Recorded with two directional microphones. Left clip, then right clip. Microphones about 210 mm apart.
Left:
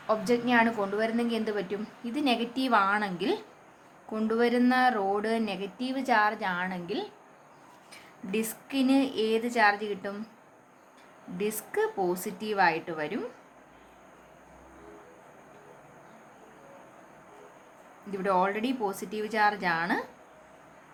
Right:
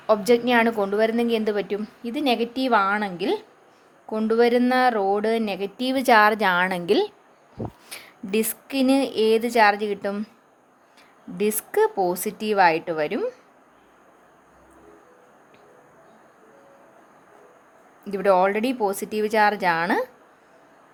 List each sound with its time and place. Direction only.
0.1 s a woman's voice: 35° right (ahead or behind)
11.3 s speech: 35° right (ahead or behind)
18.1 s speech: 35° right (ahead or behind)